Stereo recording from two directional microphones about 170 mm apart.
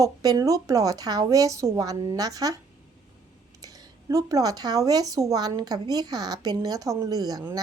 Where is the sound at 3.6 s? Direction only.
20° right (ahead or behind).